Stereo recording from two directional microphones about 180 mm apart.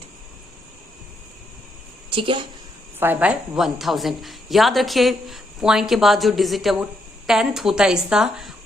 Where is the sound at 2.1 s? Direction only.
30° right (ahead or behind).